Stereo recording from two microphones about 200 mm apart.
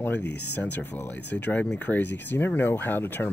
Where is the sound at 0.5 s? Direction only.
10° left (ahead or behind).